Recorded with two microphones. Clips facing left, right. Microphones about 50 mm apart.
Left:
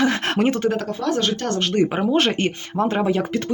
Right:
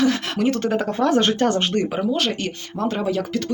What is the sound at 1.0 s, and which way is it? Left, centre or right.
Speech, right.